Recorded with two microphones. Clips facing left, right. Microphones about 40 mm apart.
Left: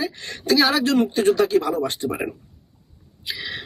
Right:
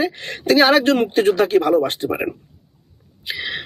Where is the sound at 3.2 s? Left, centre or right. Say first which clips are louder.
Right 4 dB; right.